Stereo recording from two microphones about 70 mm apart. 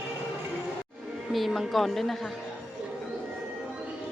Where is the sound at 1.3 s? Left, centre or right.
Centre.